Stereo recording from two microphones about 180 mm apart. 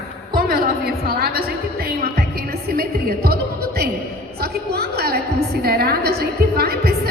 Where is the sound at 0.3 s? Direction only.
55° right (ahead or behind).